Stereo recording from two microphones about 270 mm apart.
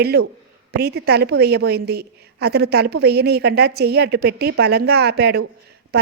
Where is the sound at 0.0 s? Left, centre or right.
Right.